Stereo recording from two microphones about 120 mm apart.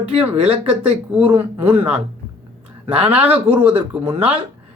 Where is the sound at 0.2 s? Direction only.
15° right (ahead or behind).